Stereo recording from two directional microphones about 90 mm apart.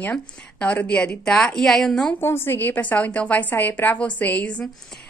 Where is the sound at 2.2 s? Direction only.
25° left (ahead or behind).